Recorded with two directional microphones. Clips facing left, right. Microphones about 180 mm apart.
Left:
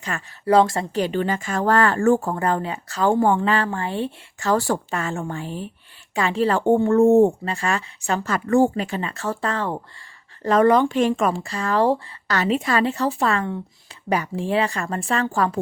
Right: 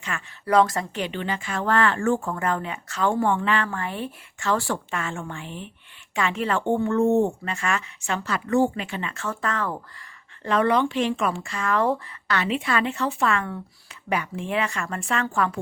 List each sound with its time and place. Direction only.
0.1 s speech: 40° left (ahead or behind)
0.4 s speech: 25° left (ahead or behind)
10.4 s speech: 40° left (ahead or behind)